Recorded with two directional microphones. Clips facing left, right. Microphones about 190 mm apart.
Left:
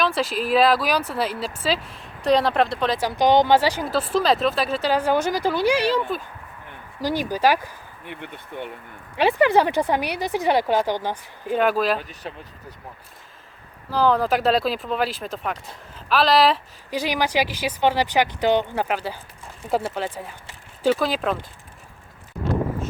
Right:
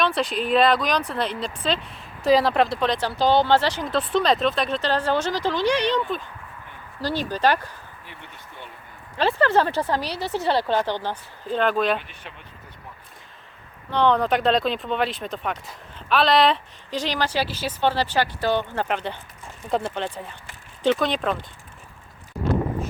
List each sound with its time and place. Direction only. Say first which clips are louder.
0.0 s speech: even; centre (ahead or behind)
3.0 s speech: left 3 dB; 15° left (ahead or behind)
8.0 s speech: left 7 dB; 60° left (ahead or behind)
9.1 s speech: left 2 dB; 15° left (ahead or behind)
11.9 s speech: left 4 dB; 40° left (ahead or behind)
13.9 s speech: even; 5° left (ahead or behind)